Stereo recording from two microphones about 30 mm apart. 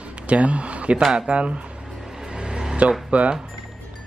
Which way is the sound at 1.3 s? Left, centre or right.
Right.